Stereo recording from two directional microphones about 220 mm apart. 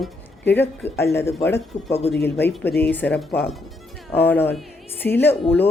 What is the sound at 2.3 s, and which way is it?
A woman's voice, 10° left (ahead or behind).